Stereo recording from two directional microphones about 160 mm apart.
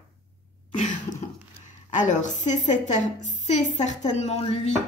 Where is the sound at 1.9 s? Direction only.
50° left (ahead or behind).